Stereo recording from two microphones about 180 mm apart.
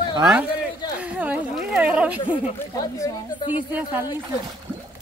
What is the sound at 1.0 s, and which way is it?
Speech, 10° right (ahead or behind).